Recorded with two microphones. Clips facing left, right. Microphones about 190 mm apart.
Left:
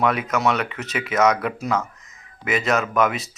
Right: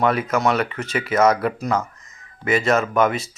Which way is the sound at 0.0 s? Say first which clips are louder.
Right 2 dB; centre (ahead or behind).